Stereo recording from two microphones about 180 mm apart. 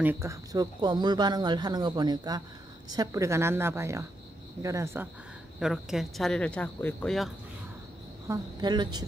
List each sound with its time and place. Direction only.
0.0 s a woman's voice: 15° right (ahead or behind)
5.6 s speech: centre (ahead or behind)
8.3 s speech: 25° right (ahead or behind)